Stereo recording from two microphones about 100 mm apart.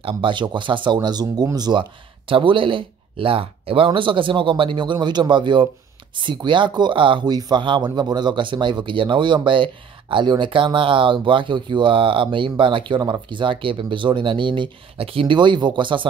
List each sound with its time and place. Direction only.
0.0 s speech: 55° right (ahead or behind)
1.0 s speech: 45° right (ahead or behind)